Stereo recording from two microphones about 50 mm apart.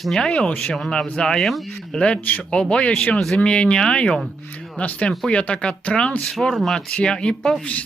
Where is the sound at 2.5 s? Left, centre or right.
Left.